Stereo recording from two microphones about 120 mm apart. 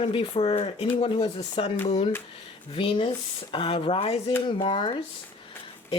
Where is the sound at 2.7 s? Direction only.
45° left (ahead or behind).